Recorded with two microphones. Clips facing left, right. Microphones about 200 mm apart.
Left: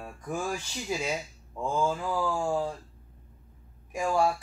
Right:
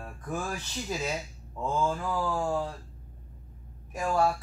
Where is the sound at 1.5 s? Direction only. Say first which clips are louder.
Left 1 dB; 10° left (ahead or behind).